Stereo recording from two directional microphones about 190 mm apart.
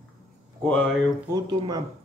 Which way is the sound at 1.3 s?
20° right (ahead or behind).